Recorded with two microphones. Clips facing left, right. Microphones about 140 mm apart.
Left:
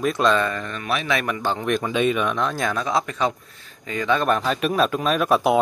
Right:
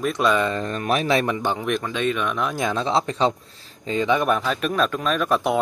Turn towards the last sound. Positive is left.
turn(degrees=5)  # may be behind; listen again after turning